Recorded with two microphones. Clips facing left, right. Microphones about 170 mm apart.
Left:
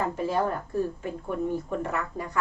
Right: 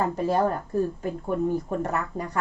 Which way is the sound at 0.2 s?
40° right (ahead or behind).